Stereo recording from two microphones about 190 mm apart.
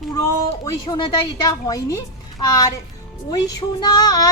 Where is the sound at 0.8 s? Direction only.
25° left (ahead or behind).